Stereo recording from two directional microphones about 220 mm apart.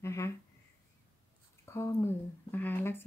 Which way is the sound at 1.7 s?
10° left (ahead or behind).